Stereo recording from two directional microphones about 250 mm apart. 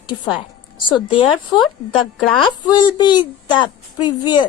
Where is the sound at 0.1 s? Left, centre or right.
Centre.